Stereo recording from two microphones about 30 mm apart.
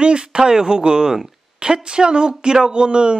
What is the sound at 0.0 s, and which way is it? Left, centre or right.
Speech, right.